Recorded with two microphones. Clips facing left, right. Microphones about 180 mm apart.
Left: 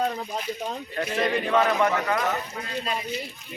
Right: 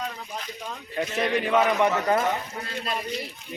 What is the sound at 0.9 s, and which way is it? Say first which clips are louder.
A man's voice: even; 5° right (ahead or behind).